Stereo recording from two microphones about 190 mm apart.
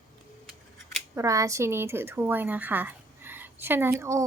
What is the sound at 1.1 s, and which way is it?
A woman's voice, 15° right (ahead or behind).